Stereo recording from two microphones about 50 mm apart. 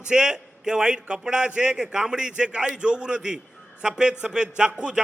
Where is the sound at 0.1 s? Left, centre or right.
Centre.